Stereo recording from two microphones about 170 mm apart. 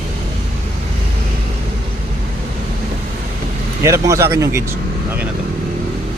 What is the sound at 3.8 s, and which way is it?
Speech, 20° right (ahead or behind).